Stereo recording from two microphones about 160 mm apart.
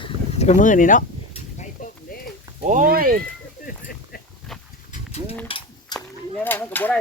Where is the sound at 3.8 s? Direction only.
70° left (ahead or behind).